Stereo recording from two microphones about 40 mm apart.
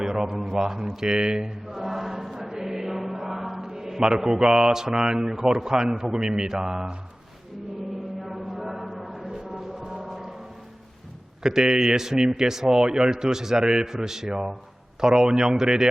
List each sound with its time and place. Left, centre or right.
0.0 s a man's voice: centre
0.6 s choir: centre
2.5 s chant: centre
5.6 s a man's voice: centre
8.3 s a sound: centre
10.1 s music: centre
11.4 s a man's voice: centre